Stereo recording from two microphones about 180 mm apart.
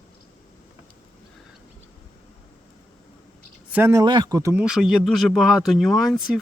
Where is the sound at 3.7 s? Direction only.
10° right (ahead or behind).